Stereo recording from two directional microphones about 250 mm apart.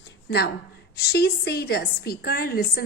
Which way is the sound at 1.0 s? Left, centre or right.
Left.